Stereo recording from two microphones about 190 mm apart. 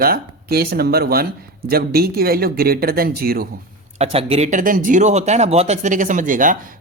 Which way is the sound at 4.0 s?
30° right (ahead or behind).